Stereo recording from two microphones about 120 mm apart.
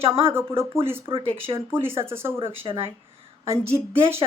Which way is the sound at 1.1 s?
50° right (ahead or behind).